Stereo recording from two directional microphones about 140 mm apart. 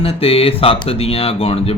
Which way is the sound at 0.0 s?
40° left (ahead or behind).